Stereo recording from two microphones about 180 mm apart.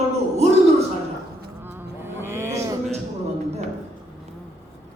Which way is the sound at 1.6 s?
10° right (ahead or behind).